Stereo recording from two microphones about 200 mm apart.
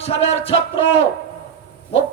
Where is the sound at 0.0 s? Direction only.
30° left (ahead or behind).